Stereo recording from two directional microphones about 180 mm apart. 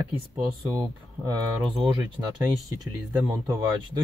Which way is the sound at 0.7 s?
Centre (ahead or behind).